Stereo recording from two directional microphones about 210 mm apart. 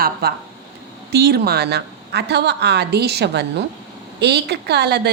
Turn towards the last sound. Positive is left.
turn(degrees=-50)  # may be behind; listen again after turning